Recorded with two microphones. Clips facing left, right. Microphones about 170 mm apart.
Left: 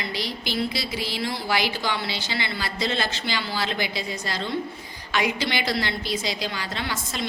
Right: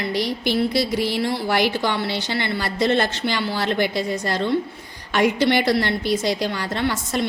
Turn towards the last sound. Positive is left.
turn(degrees=-60)  # may be behind; listen again after turning